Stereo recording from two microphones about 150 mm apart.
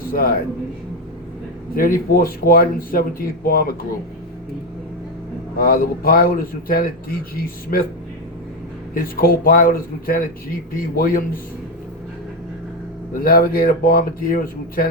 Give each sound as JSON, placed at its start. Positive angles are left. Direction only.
{"t": 0.0, "sound": "speech", "side_deg": 75}
{"t": 1.7, "sound": "speech", "side_deg": 70}
{"t": 5.5, "sound": "speech", "side_deg": 70}
{"t": 9.0, "sound": "speech", "side_deg": 75}
{"t": 13.1, "sound": "speech", "side_deg": 75}